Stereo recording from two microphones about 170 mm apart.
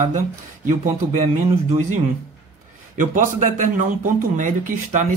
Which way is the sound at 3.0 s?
50° right (ahead or behind).